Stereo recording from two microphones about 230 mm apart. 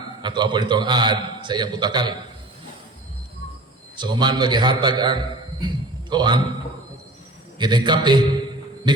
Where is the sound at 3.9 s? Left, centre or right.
Centre.